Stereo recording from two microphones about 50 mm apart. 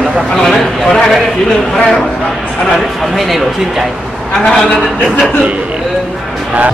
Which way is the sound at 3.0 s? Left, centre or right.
Centre.